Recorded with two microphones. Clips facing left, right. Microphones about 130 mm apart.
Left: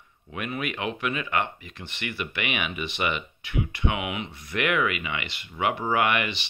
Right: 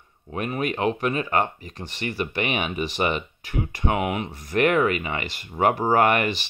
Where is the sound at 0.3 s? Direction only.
35° right (ahead or behind).